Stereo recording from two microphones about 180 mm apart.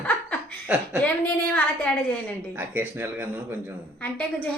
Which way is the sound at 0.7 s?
5° right (ahead or behind).